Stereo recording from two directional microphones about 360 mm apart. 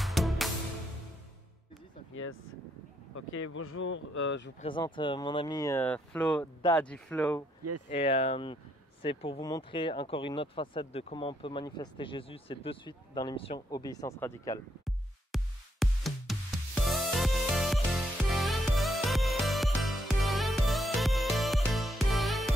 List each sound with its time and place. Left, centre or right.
0.0 s music: centre
3.2 s speech: left
4.6 s speech: centre
7.9 s speech: centre
16.8 s music: centre